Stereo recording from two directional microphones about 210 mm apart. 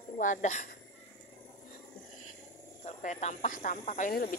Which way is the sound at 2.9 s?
30° left (ahead or behind).